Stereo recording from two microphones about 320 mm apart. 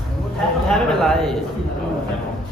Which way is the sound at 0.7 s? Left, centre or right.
Centre.